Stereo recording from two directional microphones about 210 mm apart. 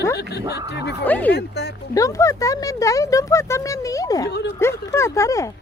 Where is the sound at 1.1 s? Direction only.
5° left (ahead or behind).